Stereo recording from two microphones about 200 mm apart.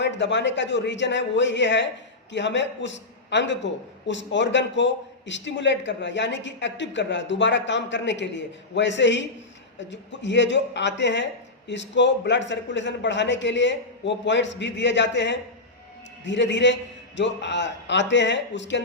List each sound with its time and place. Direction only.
0.0 s a man's voice: 60° left (ahead or behind)